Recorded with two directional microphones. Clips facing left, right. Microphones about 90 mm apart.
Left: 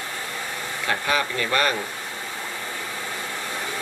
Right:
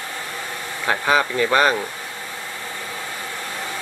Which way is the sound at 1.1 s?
20° right (ahead or behind).